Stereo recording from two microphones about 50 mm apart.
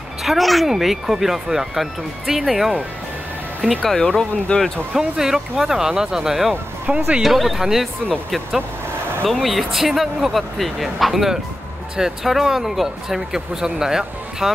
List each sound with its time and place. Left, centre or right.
0.2 s speech: centre
3.8 s speech: centre
4.9 s speech: centre
6.9 s speech: centre
7.2 s speech: centre
9.3 s speech: centre